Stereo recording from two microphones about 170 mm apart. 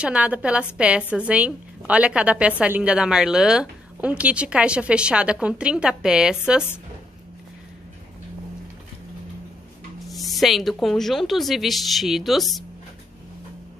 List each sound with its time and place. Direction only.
0.0 s a woman's voice: 5° right (ahead or behind)
10.0 s a woman's voice: centre (ahead or behind)